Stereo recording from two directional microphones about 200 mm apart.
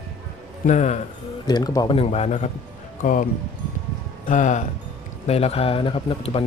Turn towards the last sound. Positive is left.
turn(degrees=30)  # may be behind; listen again after turning